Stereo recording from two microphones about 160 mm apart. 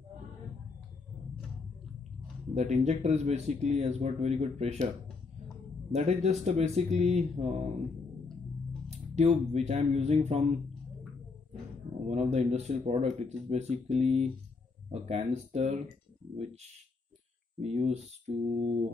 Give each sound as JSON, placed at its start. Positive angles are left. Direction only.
{"t": 2.5, "sound": "speech", "side_deg": -45}
{"t": 5.9, "sound": "speech", "side_deg": -45}
{"t": 8.9, "sound": "speech", "side_deg": -40}
{"t": 12.1, "sound": "speech", "side_deg": -45}
{"t": 17.6, "sound": "speech", "side_deg": -40}